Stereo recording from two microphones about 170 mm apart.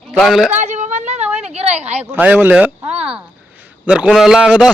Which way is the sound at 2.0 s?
10° right (ahead or behind).